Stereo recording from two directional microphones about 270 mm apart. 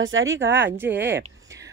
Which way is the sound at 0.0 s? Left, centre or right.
Right.